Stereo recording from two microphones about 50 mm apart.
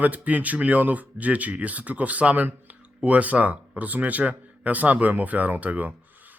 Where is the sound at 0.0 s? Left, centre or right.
Right.